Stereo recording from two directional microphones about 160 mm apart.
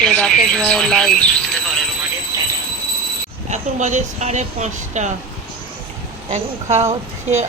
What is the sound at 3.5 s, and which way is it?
Speech, 45° right (ahead or behind).